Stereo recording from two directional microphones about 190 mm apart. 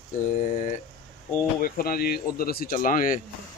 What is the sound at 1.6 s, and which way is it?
Speech, 50° left (ahead or behind).